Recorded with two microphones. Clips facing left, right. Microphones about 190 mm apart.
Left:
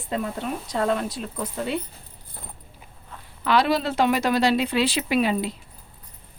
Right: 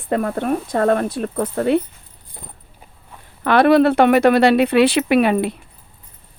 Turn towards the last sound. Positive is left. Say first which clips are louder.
# right 7 dB
turn(degrees=-60)  # may be behind; listen again after turning